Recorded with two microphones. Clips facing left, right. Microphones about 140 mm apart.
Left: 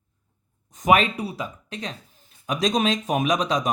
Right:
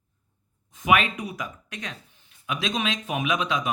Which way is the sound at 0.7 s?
40° left (ahead or behind).